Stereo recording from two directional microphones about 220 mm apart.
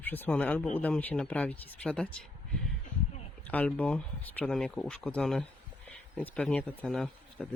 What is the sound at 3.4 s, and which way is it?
Speech, 5° left (ahead or behind).